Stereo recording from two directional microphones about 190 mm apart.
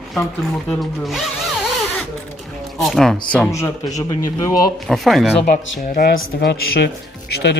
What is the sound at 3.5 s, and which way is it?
Speech, 15° left (ahead or behind).